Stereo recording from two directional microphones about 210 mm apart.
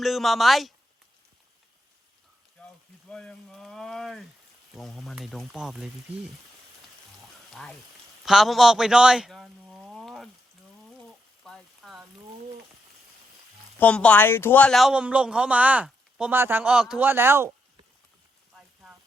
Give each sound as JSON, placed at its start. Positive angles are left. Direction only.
{"t": 0.0, "sound": "a man's voice", "side_deg": 0}
{"t": 3.1, "sound": "a sound", "side_deg": 5}
{"t": 4.7, "sound": "a man's voice", "side_deg": 0}
{"t": 7.5, "sound": "speech", "side_deg": 0}
{"t": 8.2, "sound": "a sound", "side_deg": 0}
{"t": 11.4, "sound": "rain on surface", "side_deg": 0}
{"t": 13.7, "sound": "a man's voice", "side_deg": 5}
{"t": 18.5, "sound": "rain on surface", "side_deg": -5}